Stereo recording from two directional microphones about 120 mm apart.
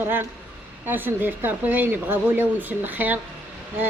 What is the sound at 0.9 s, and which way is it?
A woman's voice, 15° right (ahead or behind).